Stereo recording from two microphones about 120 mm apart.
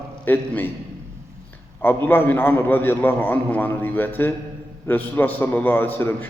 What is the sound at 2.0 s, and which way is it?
A man's voice, 15° left (ahead or behind).